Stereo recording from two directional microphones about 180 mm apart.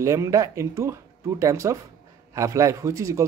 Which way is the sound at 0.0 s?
15° right (ahead or behind).